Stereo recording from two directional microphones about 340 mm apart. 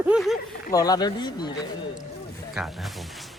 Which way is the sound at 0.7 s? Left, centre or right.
Centre.